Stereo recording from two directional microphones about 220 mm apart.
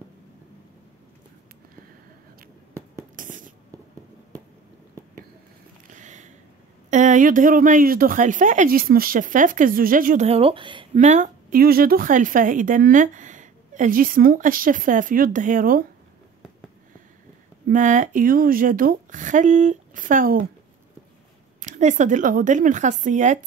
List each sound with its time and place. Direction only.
3.2 s writing: 35° right (ahead or behind)
5.9 s a sound: 35° right (ahead or behind)
6.9 s speech: 35° right (ahead or behind)
17.6 s speech: 35° right (ahead or behind)
21.5 s speech: 35° right (ahead or behind)